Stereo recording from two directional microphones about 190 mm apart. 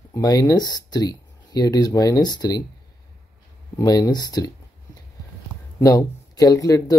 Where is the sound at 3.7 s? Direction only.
20° left (ahead or behind).